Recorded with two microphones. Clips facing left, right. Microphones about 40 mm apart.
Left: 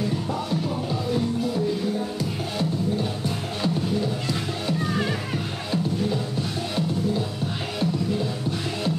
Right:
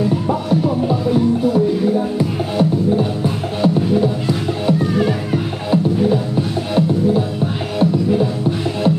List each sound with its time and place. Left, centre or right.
2.0 s music: right
4.9 s music: centre
7.8 s music: right